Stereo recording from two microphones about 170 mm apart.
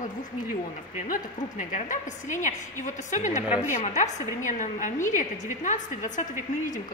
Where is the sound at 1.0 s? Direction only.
50° left (ahead or behind).